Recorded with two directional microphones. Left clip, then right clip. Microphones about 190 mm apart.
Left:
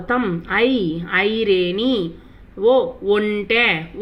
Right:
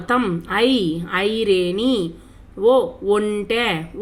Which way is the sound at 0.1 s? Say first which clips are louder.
Even; 15° right (ahead or behind).